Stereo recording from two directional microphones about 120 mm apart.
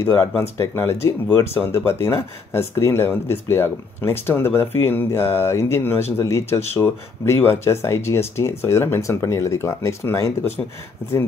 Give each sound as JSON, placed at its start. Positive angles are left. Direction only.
{"t": 0.4, "sound": "speech", "side_deg": 20}